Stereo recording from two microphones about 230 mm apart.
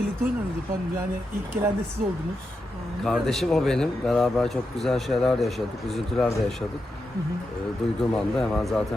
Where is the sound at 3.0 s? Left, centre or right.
Centre.